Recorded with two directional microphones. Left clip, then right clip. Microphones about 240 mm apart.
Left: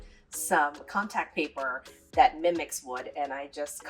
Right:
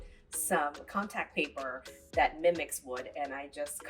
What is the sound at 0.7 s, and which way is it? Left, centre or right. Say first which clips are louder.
Speech: left 5 dB; centre.